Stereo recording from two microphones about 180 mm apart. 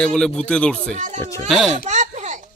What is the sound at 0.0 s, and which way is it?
Speech, 5° left (ahead or behind).